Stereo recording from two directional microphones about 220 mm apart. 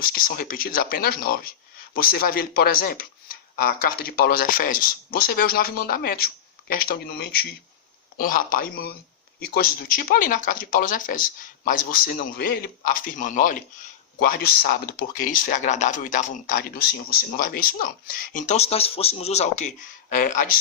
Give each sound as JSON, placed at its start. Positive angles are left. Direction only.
{"t": 0.0, "sound": "speech", "side_deg": 40}